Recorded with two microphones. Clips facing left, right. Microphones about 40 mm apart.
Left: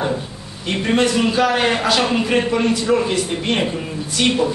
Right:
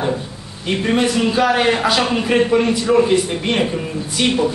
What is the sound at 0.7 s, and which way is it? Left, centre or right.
Speech, centre.